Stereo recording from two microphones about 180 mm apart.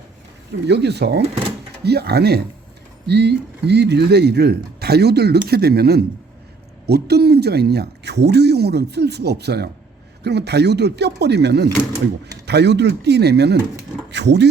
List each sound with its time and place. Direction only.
0.7 s speech: 70° right (ahead or behind)